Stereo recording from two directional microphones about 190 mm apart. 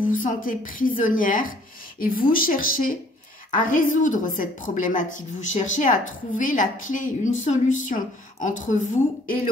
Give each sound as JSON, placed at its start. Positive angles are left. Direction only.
{"t": 0.1, "sound": "a woman's voice", "side_deg": 45}